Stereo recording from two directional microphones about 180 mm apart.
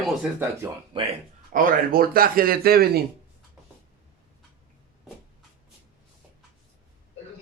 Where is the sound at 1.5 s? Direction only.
50° right (ahead or behind).